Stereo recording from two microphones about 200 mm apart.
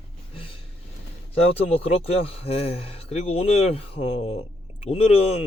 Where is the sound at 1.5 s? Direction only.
30° left (ahead or behind).